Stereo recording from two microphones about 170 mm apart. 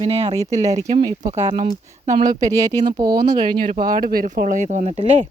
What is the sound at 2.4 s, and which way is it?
Speech, 20° right (ahead or behind).